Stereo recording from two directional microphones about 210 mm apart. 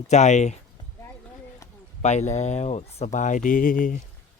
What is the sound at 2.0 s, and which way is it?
Speech, 35° left (ahead or behind).